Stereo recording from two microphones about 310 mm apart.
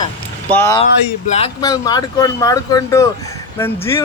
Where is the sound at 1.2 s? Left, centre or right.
Centre.